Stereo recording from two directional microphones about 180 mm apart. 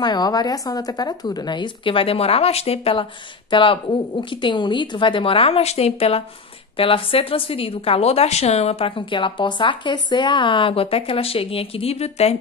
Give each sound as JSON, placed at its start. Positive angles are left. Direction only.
{"t": 0.0, "sound": "a woman's voice", "side_deg": 25}